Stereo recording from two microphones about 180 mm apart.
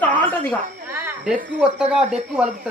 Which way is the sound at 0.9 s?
10° right (ahead or behind).